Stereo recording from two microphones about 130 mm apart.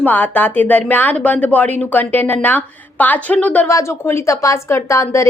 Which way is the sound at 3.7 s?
20° left (ahead or behind).